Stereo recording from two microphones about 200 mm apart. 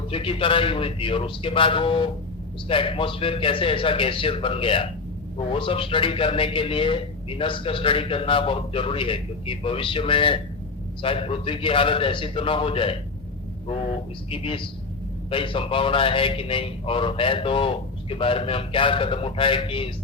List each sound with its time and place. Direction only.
0.1 s a man's voice: 25° left (ahead or behind)
14.3 s a man's voice: 25° left (ahead or behind)